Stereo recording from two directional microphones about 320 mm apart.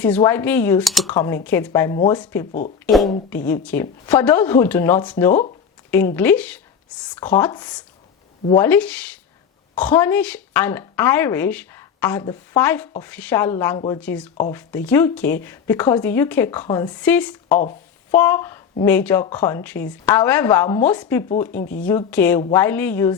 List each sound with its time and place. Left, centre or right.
0.0 s speech: centre
2.5 s speech: left
2.8 s a woman's voice: centre